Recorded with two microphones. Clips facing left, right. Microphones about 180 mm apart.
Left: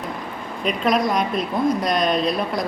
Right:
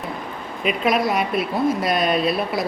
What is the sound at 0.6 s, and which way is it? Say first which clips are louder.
A woman's voice: even; 5° right (ahead or behind).